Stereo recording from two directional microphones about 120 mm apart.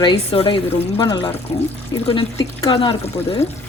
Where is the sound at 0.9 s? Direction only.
35° left (ahead or behind).